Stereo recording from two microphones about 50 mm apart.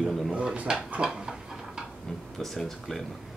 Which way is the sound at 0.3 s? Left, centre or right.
Centre.